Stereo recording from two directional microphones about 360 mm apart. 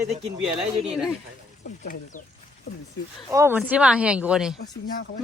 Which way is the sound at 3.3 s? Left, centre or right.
Centre.